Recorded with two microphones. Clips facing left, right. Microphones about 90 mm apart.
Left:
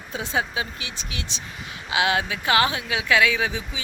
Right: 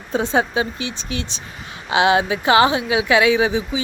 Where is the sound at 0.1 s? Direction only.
35° right (ahead or behind).